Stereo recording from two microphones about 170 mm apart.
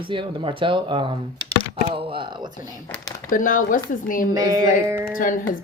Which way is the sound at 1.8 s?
30° right (ahead or behind).